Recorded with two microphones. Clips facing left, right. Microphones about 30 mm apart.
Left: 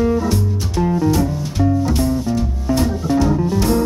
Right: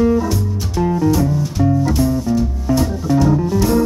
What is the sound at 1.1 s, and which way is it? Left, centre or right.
Music, centre.